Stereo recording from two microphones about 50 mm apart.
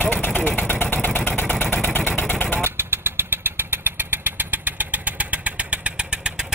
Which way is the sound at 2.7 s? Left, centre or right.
Right.